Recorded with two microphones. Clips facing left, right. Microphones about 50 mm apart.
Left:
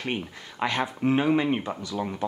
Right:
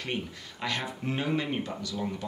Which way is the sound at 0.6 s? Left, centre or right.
Left.